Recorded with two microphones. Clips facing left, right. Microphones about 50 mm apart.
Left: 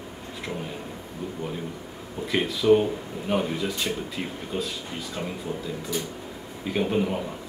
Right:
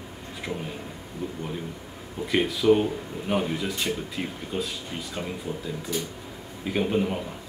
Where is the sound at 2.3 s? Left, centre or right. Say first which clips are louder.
Left 1 dB; centre.